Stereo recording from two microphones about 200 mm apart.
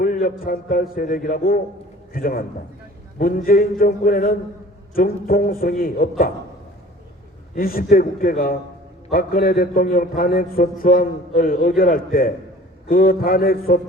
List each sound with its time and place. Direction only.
0.0 s a man's voice: 45° left (ahead or behind)
7.5 s a man's voice: 50° left (ahead or behind)